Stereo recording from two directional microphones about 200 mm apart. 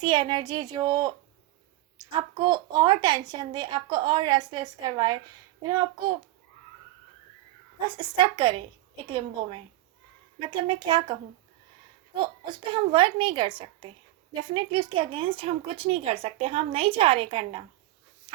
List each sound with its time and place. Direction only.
0.0 s a woman's voice: 25° right (ahead or behind)
7.8 s a woman's voice: 20° right (ahead or behind)
18.3 s dog: 30° right (ahead or behind)